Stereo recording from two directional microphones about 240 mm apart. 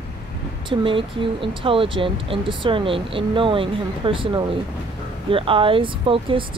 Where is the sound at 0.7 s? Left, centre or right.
Right.